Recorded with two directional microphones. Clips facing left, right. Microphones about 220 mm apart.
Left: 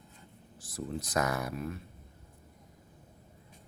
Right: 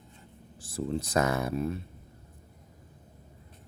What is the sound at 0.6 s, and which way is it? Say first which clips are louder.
Speech: right 6 dB; 30° right (ahead or behind).